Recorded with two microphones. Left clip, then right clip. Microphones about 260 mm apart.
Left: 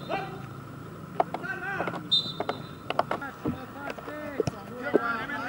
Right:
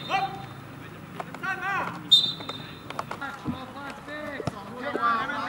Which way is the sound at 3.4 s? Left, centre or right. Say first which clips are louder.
Left 1 dB; right.